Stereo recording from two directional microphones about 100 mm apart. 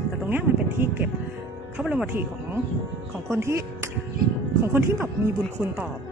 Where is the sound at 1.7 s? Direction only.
5° right (ahead or behind).